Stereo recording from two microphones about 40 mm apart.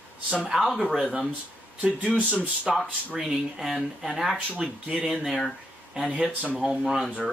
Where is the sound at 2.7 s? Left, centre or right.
Centre.